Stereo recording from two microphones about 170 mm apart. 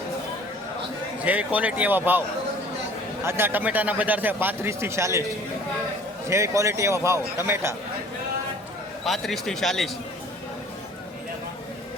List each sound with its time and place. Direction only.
1.2 s a man's voice: 10° right (ahead or behind)
3.2 s a man's voice: 15° right (ahead or behind)
6.2 s a man's voice: 15° right (ahead or behind)
9.0 s a man's voice: centre (ahead or behind)